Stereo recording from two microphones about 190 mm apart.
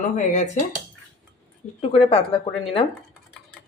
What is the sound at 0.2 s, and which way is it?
Speech, 40° left (ahead or behind).